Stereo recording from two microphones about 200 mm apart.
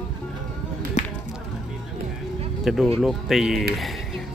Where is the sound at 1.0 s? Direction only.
35° left (ahead or behind).